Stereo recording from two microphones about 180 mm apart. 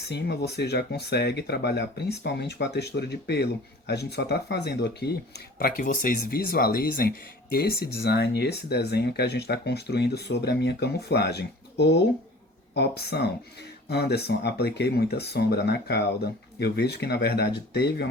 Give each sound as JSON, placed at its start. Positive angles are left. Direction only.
{"t": 0.1, "sound": "speech", "side_deg": 65}